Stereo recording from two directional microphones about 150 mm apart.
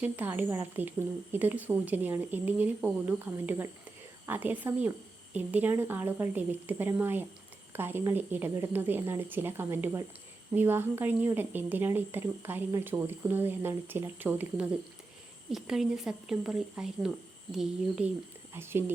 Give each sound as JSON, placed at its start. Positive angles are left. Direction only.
{"t": 0.0, "sound": "speech", "side_deg": -10}
{"t": 18.5, "sound": "speech", "side_deg": -15}